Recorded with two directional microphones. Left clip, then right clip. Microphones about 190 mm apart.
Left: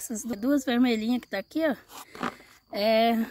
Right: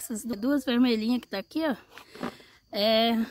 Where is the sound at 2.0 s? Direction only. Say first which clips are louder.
Left 4 dB; 50° left (ahead or behind).